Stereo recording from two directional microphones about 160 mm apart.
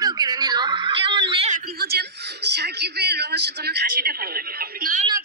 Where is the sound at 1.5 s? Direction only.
75° right (ahead or behind).